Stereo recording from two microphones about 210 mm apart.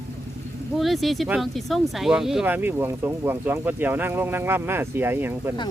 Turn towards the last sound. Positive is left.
turn(degrees=-10)  # may be behind; listen again after turning